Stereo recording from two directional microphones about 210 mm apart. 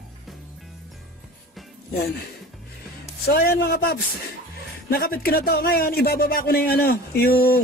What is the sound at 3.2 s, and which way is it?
Speech, 50° left (ahead or behind).